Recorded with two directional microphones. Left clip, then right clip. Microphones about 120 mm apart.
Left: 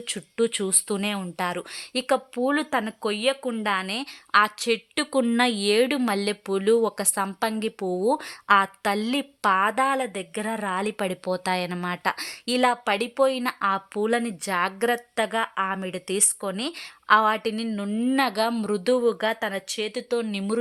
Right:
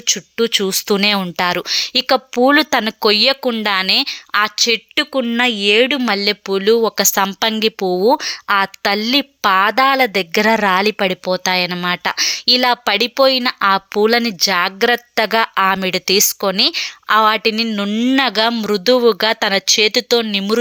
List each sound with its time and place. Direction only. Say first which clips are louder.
0.1 s speech: right 10 dB; 10° right (ahead or behind)
2.1 s speech: right 12 dB; 30° right (ahead or behind)
3.0 s a woman's voice: right 12 dB; 35° right (ahead or behind)
8.2 s a woman's voice: right 4 dB; 10° right (ahead or behind); by 10.9 s 30° right (ahead or behind)
10.9 s a woman's voice: right 10 dB; 15° right (ahead or behind)
14.9 s speech: right 10 dB; 30° right (ahead or behind)
16.6 s a woman's voice: right 16 dB; 15° right (ahead or behind)
17.7 s speech: right 8 dB; 30° right (ahead or behind)
20.2 s speech: right 11 dB; 20° right (ahead or behind)